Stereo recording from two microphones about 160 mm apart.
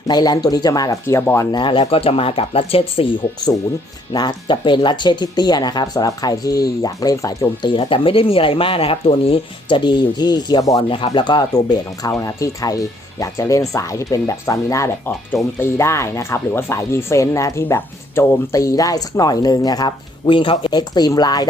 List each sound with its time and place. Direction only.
0.1 s speech: 25° left (ahead or behind)
4.1 s speech: 25° left (ahead or behind)
10.8 s speech: 35° left (ahead or behind)